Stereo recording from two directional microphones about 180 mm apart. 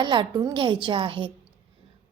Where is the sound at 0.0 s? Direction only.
25° right (ahead or behind).